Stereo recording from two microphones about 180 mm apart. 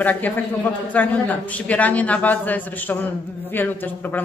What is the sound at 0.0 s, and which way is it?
A woman's voice, 10° left (ahead or behind).